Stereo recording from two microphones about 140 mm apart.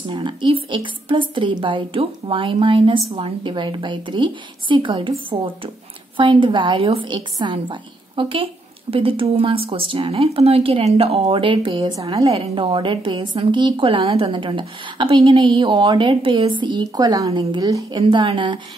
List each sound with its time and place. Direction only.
0.1 s a woman's voice: 35° right (ahead or behind)
17.3 s a woman's voice: 40° right (ahead or behind)
17.6 s a woman's voice: 25° right (ahead or behind)
18.0 s a woman's voice: 40° right (ahead or behind)